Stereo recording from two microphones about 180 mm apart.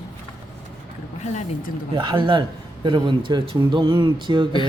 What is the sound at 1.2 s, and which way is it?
Speech, 40° left (ahead or behind).